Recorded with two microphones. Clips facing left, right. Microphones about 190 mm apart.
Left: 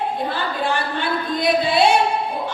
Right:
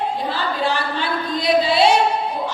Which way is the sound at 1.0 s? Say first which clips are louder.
Left 1 dB; 55° left (ahead or behind).